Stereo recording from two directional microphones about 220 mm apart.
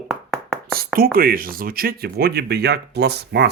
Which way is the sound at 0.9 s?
40° right (ahead or behind).